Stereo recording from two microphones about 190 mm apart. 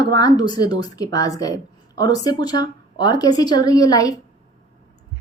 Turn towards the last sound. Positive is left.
turn(degrees=20)  # may be behind; listen again after turning